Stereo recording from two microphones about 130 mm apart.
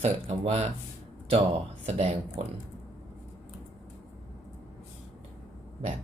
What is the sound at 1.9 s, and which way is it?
Speech, 50° right (ahead or behind).